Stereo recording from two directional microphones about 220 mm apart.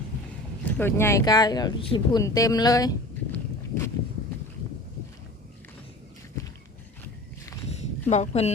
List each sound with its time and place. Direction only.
0.8 s speech: 10° left (ahead or behind)
3.3 s walk: 10° left (ahead or behind)
7.7 s a sound: 30° left (ahead or behind)